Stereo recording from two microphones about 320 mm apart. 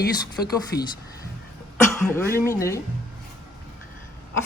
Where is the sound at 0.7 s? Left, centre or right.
Left.